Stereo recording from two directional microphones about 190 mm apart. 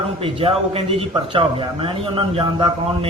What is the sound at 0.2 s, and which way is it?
Speech, 30° right (ahead or behind).